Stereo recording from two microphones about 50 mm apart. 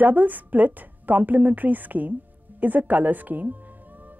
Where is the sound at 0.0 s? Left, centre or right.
Right.